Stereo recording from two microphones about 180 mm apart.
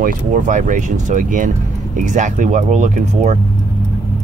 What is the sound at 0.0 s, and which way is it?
Speech, 50° right (ahead or behind).